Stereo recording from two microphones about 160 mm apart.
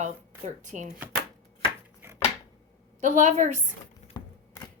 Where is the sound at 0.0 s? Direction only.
50° right (ahead or behind).